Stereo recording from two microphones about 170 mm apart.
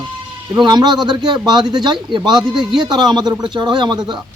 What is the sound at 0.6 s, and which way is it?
Speech, 25° right (ahead or behind).